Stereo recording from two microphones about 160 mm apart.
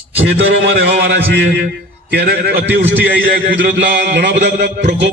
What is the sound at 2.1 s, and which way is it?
A man's voice, 75° right (ahead or behind).